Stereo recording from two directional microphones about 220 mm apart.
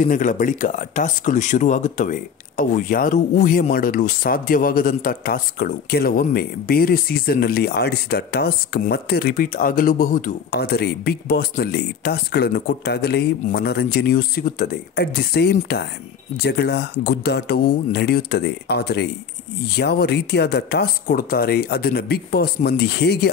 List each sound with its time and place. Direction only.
0.0 s speech: 35° left (ahead or behind)